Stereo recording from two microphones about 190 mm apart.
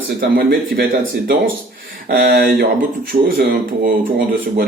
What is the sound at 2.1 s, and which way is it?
Speech, 50° right (ahead or behind).